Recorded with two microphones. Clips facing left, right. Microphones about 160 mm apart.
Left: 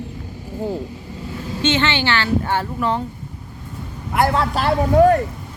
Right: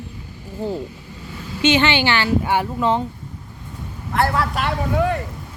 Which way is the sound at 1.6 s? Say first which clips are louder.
Right 2 dB; 10° right (ahead or behind).